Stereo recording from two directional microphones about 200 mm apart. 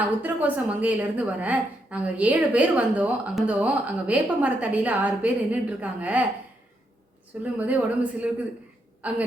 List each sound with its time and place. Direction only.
0.2 s a woman's voice: 10° right (ahead or behind)
7.4 s a woman's voice: 5° right (ahead or behind)
9.0 s a sound: 5° right (ahead or behind)